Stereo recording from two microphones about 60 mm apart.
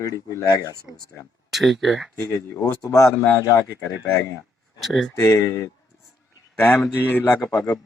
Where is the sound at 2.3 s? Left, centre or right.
Left.